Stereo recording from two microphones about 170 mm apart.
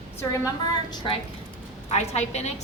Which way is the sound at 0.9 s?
30° left (ahead or behind).